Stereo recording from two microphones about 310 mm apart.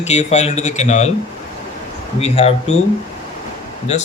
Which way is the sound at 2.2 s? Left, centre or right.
Centre.